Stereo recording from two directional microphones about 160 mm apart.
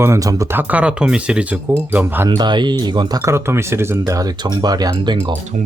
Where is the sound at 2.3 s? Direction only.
30° right (ahead or behind).